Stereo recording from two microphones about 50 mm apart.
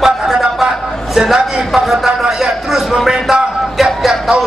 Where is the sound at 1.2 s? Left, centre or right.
Centre.